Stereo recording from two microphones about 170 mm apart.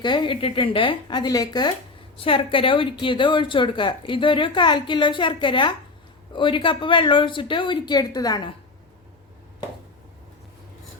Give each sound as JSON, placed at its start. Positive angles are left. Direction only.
{"t": 0.0, "sound": "speech", "side_deg": 25}